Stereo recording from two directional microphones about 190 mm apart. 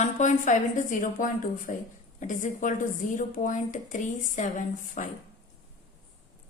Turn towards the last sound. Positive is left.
turn(degrees=45)  # may be behind; listen again after turning